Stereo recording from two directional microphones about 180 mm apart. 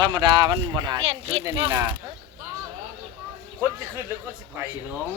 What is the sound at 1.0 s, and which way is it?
Speech, 35° right (ahead or behind).